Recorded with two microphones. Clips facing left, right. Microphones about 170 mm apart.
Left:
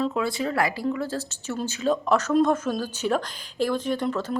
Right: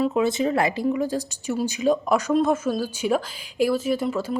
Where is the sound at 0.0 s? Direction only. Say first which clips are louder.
Right 4 dB; 20° right (ahead or behind).